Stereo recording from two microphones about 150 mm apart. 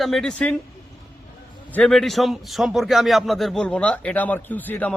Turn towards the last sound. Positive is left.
turn(degrees=10)  # may be behind; listen again after turning